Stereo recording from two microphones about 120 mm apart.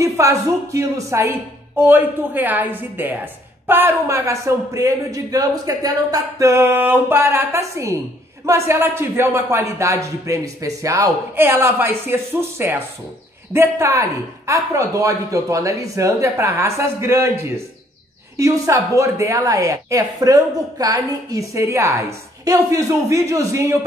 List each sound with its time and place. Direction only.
0.0 s a woman's voice: 25° right (ahead or behind)